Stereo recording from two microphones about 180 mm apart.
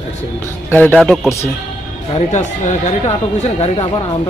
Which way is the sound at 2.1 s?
40° left (ahead or behind).